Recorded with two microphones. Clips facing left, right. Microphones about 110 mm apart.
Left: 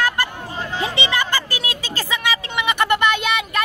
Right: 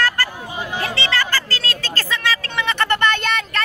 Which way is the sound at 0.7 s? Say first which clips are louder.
Left 1 dB; 20° left (ahead or behind).